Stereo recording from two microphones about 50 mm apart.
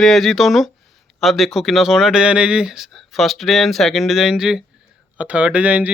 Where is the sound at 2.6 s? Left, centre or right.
Centre.